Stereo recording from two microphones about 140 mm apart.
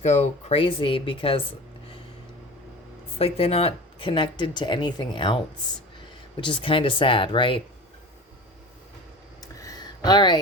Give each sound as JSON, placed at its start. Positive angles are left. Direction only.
{"t": 0.0, "sound": "speech", "side_deg": 50}
{"t": 3.2, "sound": "speech", "side_deg": 45}
{"t": 9.4, "sound": "a sound", "side_deg": 25}